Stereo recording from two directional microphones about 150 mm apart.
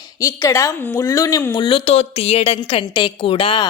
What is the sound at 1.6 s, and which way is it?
A woman's voice, 40° left (ahead or behind).